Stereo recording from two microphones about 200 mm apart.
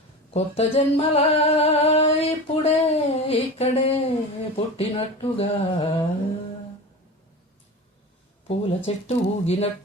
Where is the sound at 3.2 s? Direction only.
30° left (ahead or behind).